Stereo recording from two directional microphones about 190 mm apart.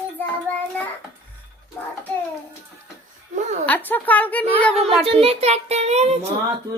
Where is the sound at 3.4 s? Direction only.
40° right (ahead or behind).